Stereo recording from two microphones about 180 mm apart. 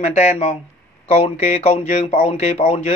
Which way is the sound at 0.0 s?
35° left (ahead or behind).